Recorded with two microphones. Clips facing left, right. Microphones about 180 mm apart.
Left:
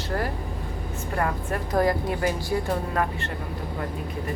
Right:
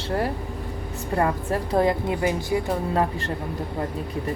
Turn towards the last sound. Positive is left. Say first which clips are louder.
# right 3 dB
turn(degrees=-25)  # may be behind; listen again after turning